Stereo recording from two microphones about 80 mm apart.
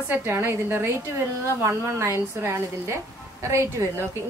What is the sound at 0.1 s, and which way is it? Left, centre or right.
A woman's voice, right.